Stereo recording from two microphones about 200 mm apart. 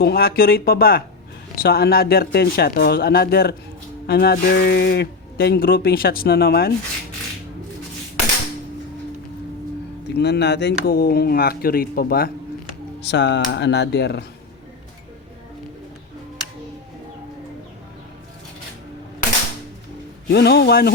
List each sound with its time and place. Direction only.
0.0 s speech: 50° left (ahead or behind)
10.2 s speech: 55° left (ahead or behind)
13.1 s speech: 60° left (ahead or behind)
20.3 s speech: 55° left (ahead or behind)